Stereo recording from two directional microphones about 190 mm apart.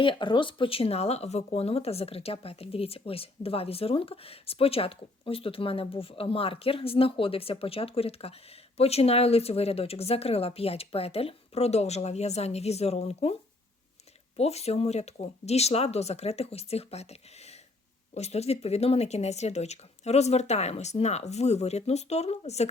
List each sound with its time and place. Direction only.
0.0 s speech: 25° left (ahead or behind)
14.3 s speech: 35° left (ahead or behind)